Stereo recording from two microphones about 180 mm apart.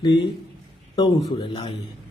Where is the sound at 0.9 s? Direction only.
20° left (ahead or behind).